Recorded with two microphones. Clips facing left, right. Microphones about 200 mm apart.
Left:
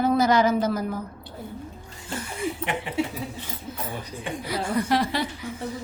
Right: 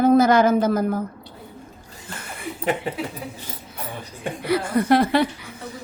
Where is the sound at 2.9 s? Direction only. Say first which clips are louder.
Left 1 dB; 40° right (ahead or behind).